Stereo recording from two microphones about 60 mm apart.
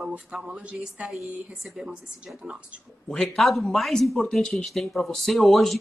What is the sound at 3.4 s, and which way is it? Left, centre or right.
Speech, centre.